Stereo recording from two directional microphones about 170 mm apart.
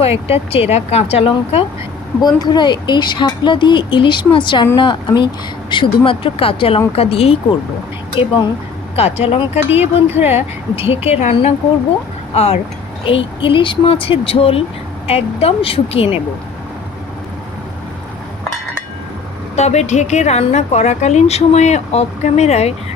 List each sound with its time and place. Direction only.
0.0 s a woman's voice: 35° left (ahead or behind)
9.7 s speech: 10° right (ahead or behind)
10.2 s a woman's voice: 35° left (ahead or behind)
19.5 s a woman's voice: 40° left (ahead or behind)